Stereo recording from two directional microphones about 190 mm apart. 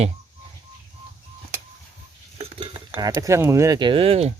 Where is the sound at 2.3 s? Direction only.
30° right (ahead or behind).